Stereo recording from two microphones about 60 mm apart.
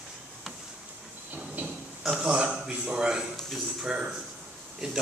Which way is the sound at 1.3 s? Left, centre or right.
Right.